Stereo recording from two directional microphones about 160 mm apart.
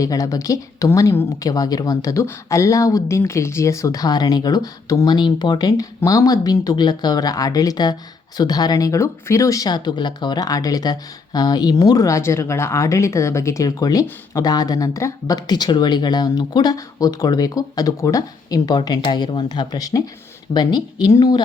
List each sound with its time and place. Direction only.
0.0 s speech: 20° left (ahead or behind)